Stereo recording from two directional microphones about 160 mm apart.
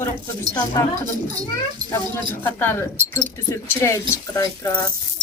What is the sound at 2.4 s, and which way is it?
Speech, 15° left (ahead or behind).